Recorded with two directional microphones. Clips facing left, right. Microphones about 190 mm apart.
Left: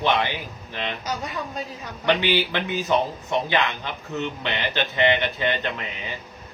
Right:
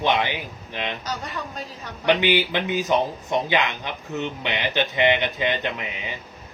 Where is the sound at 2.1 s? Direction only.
15° right (ahead or behind).